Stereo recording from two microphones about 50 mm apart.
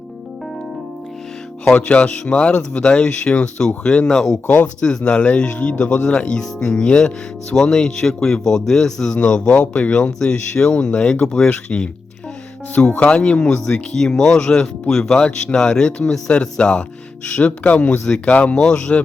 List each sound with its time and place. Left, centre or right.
1.7 s a man's voice: left
4.4 s speech: left
4.8 s a man's voice: centre